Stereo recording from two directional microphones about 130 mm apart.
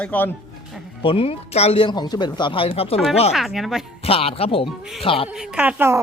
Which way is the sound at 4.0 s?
50° left (ahead or behind).